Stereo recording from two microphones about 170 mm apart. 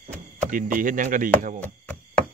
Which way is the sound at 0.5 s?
50° right (ahead or behind).